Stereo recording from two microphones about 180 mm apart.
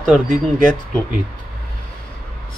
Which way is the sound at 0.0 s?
Centre (ahead or behind).